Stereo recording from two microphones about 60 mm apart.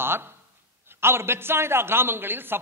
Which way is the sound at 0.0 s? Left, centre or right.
Right.